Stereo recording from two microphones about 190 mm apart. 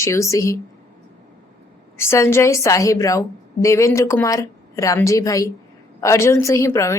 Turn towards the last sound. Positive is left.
turn(degrees=15)  # may be behind; listen again after turning